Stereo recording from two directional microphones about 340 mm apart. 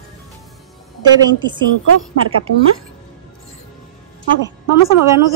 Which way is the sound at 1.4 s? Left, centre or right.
Centre.